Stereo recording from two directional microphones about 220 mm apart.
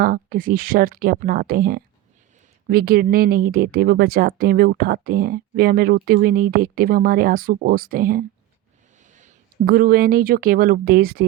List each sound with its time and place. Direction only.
0.0 s speech: 40° right (ahead or behind)